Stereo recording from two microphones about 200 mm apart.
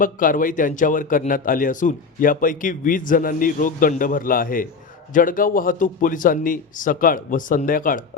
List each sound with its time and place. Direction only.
0.0 s a man's voice: 45° left (ahead or behind)